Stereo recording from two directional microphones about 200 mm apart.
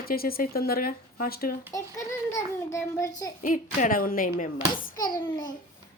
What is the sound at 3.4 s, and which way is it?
Speech, 40° left (ahead or behind).